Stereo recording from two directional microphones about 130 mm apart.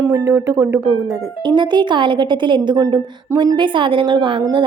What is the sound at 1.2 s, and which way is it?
A woman's voice, 35° right (ahead or behind).